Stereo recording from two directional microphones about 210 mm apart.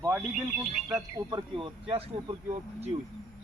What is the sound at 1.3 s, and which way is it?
Speech, 20° right (ahead or behind).